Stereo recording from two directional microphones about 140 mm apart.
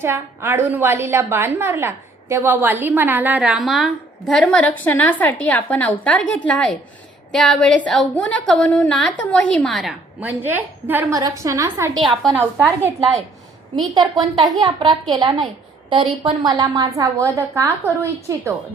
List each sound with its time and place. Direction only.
0.0 s a woman's voice: 20° right (ahead or behind); by 9.9 s centre (ahead or behind)
10.2 s a woman's voice: 15° right (ahead or behind)
11.9 s a woman's voice: centre (ahead or behind)
12.4 s a woman's voice: 15° right (ahead or behind)
13.7 s a woman's voice: 30° right (ahead or behind)